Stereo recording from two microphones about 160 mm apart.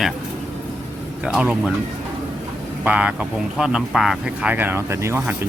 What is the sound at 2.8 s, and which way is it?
Speech, 10° right (ahead or behind).